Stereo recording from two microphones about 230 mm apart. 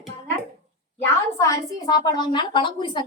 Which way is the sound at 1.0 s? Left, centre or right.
Centre.